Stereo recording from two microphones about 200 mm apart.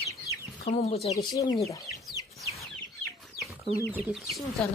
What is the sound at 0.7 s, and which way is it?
Speech, 35° left (ahead or behind).